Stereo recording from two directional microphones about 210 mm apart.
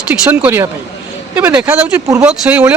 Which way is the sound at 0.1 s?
10° right (ahead or behind).